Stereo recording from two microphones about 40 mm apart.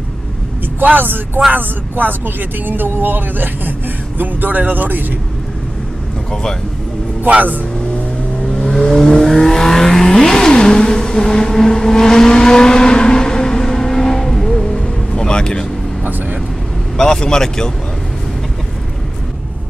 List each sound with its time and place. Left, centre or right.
0.8 s speech: right
7.2 s speech: right
8.5 s vehicle: centre
16.0 s vehicle: right
16.9 s speech: centre